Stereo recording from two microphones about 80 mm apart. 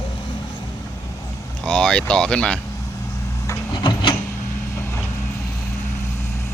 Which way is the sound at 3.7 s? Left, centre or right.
Left.